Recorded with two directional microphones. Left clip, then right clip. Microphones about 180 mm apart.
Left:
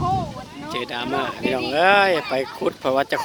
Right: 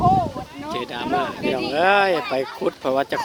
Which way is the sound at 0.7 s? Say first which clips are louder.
Right 1 dB; 10° left (ahead or behind).